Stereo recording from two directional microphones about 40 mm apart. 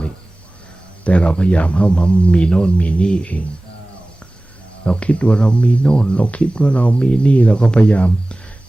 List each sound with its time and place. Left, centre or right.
1.0 s speech: left
4.9 s speech: left